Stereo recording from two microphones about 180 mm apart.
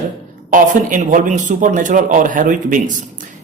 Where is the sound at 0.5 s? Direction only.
45° right (ahead or behind).